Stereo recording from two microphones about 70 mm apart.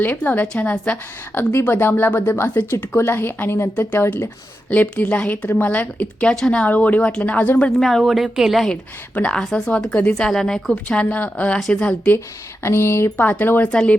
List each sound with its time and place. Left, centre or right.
0.4 s a woman's voice: centre
1.4 s a woman's voice: left
7.8 s a woman's voice: centre
9.1 s a woman's voice: centre
10.8 s a woman's voice: left
12.6 s speech: left
13.7 s a woman's voice: centre